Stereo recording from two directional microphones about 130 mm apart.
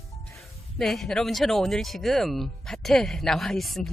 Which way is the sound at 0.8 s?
5° left (ahead or behind).